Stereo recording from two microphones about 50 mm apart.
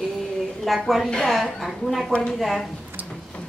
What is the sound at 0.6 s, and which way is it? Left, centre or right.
A woman's voice, centre.